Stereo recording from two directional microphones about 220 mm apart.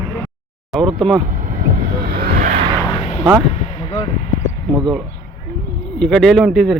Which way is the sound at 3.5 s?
25° left (ahead or behind).